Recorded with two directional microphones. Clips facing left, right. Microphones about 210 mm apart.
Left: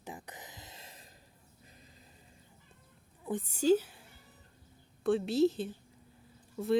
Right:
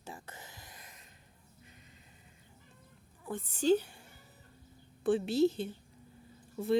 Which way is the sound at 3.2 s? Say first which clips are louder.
Left 1 dB; 15° left (ahead or behind).